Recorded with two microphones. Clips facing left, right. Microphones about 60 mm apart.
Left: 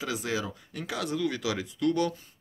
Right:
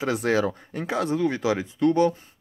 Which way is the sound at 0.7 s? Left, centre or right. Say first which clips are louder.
Right 5 dB; right.